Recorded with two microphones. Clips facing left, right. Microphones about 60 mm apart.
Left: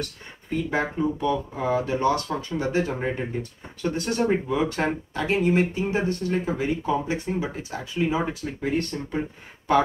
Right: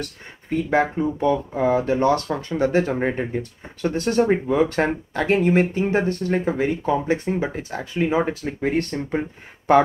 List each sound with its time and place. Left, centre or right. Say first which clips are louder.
0.0 s speech: right 1 dB; right
1.2 s speech: right 5 dB; right